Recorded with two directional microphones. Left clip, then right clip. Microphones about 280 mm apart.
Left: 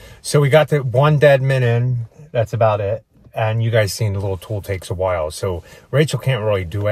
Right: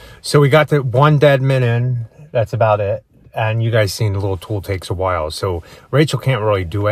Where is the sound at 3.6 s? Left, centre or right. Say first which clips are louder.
Right 1 dB; right.